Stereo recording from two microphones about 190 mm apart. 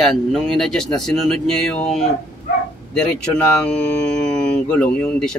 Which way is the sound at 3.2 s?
5° left (ahead or behind).